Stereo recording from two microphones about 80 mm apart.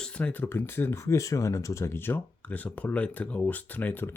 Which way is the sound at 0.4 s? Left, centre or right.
Left.